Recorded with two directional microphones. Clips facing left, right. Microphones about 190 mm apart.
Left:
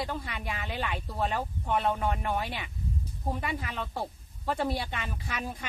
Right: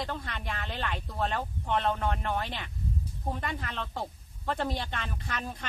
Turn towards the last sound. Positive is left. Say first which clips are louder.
# left 1 dB
turn(degrees=10)  # may be behind; listen again after turning